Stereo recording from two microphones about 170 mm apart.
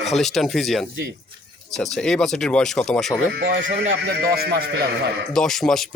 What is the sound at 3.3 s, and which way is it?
Speech, 65° right (ahead or behind).